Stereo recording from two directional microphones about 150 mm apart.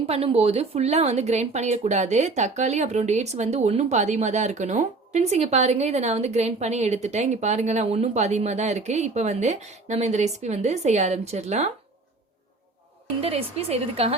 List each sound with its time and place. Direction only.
0.0 s speech: 40° right (ahead or behind)
13.2 s speech: 40° right (ahead or behind)